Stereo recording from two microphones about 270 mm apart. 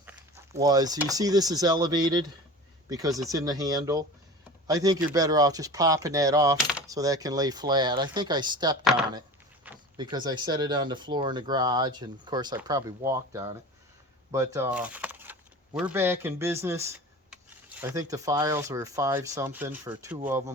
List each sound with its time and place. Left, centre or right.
0.6 s speech: centre
8.8 s speech: centre
9.6 s speech: centre